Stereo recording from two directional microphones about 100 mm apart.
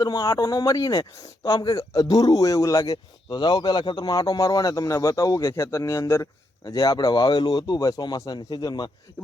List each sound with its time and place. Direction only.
0.0 s a man's voice: 35° left (ahead or behind)
6.7 s speech: 40° left (ahead or behind)